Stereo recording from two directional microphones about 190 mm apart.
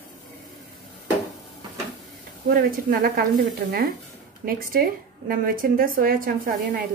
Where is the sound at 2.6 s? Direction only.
50° right (ahead or behind).